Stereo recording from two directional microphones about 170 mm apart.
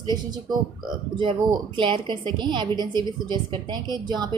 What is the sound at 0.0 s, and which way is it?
A woman's voice, 25° right (ahead or behind).